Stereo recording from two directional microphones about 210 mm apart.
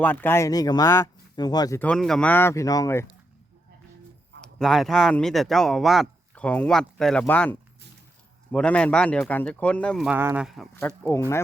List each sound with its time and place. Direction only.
0.0 s speech: 10° left (ahead or behind)
1.8 s speech: 5° left (ahead or behind)
4.4 s speech: centre (ahead or behind)